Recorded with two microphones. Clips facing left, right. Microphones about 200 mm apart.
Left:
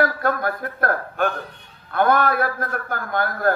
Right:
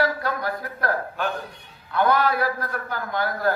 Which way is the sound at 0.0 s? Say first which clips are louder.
Left 3 dB; 55° left (ahead or behind).